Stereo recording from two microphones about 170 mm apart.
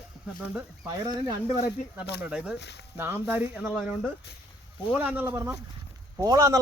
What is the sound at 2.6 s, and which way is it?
Speech, 90° left.